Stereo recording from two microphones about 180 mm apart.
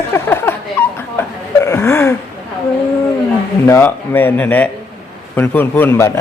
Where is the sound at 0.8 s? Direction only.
10° left (ahead or behind).